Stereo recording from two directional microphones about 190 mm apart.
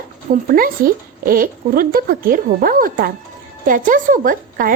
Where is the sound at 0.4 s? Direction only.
50° right (ahead or behind).